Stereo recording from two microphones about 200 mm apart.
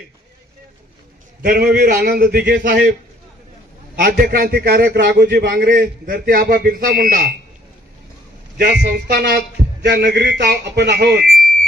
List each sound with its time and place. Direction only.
1.4 s a man's voice: 50° right (ahead or behind)
3.9 s a man's voice: 50° right (ahead or behind)
8.5 s a man's voice: 55° right (ahead or behind)